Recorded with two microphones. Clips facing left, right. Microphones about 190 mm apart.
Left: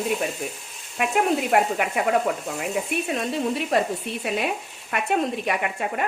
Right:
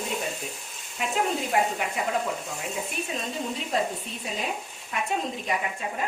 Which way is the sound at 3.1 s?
70° left (ahead or behind).